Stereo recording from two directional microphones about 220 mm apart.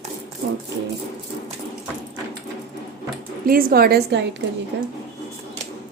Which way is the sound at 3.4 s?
40° right (ahead or behind).